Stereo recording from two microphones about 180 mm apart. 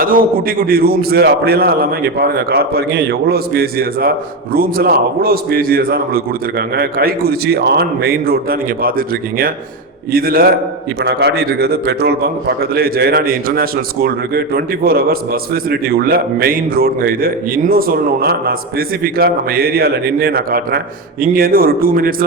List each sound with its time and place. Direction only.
0.0 s a man's voice: 55° right (ahead or behind)